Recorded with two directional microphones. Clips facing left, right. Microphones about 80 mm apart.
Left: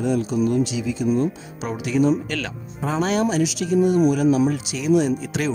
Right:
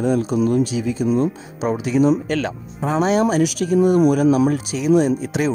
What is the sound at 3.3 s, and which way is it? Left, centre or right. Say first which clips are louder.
Speech: right 3 dB; right.